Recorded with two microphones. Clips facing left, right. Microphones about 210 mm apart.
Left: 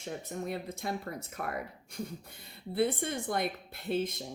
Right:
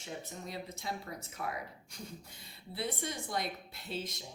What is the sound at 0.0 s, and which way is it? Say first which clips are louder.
Speech: left 6 dB; 55° left (ahead or behind).